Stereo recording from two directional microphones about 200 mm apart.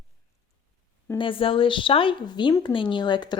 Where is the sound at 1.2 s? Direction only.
25° left (ahead or behind).